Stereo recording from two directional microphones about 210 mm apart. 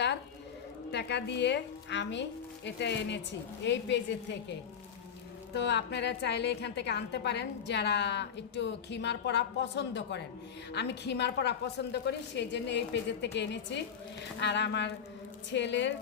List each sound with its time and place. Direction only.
0.9 s a woman's voice: 55° left (ahead or behind)
5.5 s a woman's voice: 55° left (ahead or behind)